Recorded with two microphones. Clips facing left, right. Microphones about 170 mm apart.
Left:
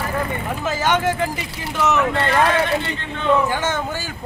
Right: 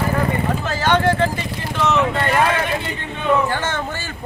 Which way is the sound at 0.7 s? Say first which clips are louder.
Right 2 dB; 15° left (ahead or behind).